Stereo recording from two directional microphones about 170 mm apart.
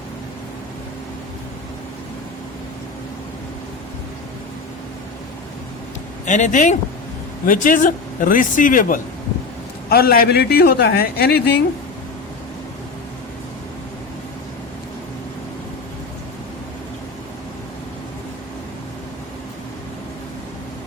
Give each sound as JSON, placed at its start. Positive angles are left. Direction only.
{"t": 6.2, "sound": "speech", "side_deg": 45}